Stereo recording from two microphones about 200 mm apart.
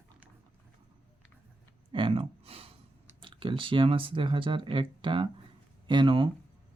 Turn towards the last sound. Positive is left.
turn(degrees=-25)  # may be behind; listen again after turning